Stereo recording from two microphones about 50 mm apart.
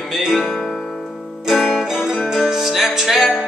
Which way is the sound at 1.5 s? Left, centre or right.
Centre.